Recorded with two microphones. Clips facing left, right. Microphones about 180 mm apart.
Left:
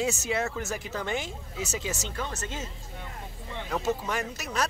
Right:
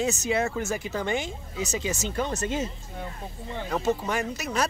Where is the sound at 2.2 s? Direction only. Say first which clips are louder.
Right 7 dB; 15° right (ahead or behind).